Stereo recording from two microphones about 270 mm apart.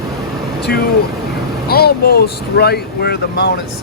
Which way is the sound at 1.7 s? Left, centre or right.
Left.